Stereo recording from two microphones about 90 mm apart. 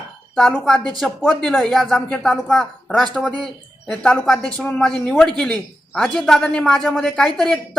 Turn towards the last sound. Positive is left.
turn(degrees=5)  # may be behind; listen again after turning